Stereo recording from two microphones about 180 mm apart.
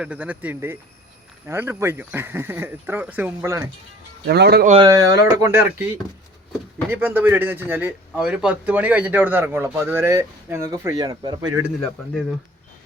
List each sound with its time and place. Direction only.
0.0 s speech: 5° right (ahead or behind)
4.3 s speech: 65° right (ahead or behind)
4.8 s speech: 20° right (ahead or behind)
6.9 s speech: 10° right (ahead or behind)